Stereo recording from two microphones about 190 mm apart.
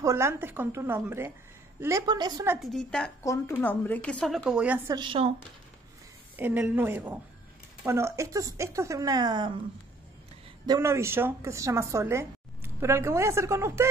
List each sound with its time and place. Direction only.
0.0 s a woman's voice: 15° right (ahead or behind)
2.6 s a woman's voice: 5° left (ahead or behind)
4.9 s speech: 25° right (ahead or behind)
6.3 s a woman's voice: 10° right (ahead or behind)
10.7 s a woman's voice: 15° right (ahead or behind)